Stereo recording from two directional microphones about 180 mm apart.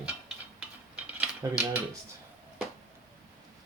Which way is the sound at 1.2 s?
5° right (ahead or behind).